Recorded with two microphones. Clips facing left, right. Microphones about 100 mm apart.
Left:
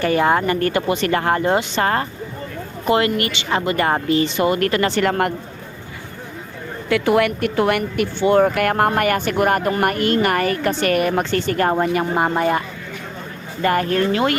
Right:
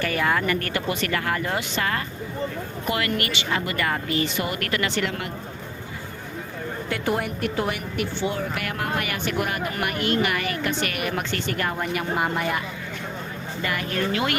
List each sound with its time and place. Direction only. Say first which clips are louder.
0.0 s a woman's voice: left 7 dB; 30° left (ahead or behind); by 5.3 s 50° left (ahead or behind)
6.9 s a woman's voice: left 10 dB; 90° left; by 14.3 s 35° left (ahead or behind)